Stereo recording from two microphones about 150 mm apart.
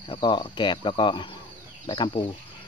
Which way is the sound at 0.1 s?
30° left (ahead or behind).